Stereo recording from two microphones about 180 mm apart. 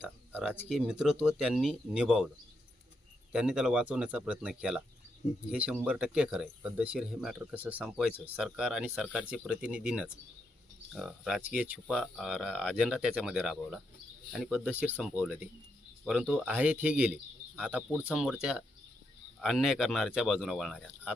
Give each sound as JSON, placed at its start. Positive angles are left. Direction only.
{"t": 0.0, "sound": "speech", "side_deg": -5}
{"t": 3.3, "sound": "speech", "side_deg": -5}